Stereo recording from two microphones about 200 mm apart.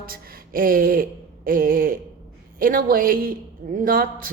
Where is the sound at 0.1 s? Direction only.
45° right (ahead or behind).